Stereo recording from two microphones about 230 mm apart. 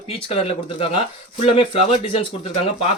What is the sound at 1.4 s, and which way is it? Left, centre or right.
Speech, left.